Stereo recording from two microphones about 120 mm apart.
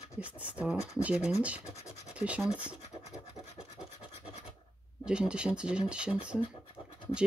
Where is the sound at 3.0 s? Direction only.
70° left (ahead or behind).